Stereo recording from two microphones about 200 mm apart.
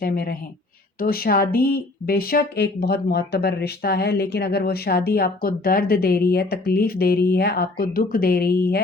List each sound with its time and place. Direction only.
0.0 s speech: 45° left (ahead or behind)